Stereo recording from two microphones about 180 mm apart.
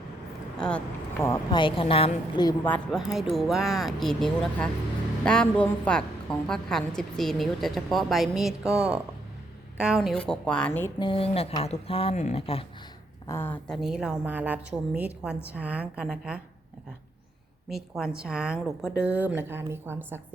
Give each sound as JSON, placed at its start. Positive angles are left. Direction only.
{"t": 0.6, "sound": "a woman's voice", "side_deg": 5}
{"t": 1.2, "sound": "speech", "side_deg": 15}
{"t": 1.6, "sound": "speech", "side_deg": 30}
{"t": 2.6, "sound": "a woman's voice", "side_deg": 5}
{"t": 11.0, "sound": "speech", "side_deg": 30}
{"t": 13.2, "sound": "speech", "side_deg": 15}
{"t": 13.8, "sound": "a woman's voice", "side_deg": -5}
{"t": 17.7, "sound": "a woman's voice", "side_deg": -5}